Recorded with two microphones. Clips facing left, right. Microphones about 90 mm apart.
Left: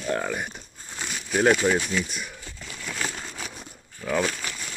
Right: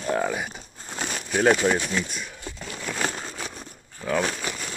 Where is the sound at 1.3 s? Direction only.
Centre (ahead or behind).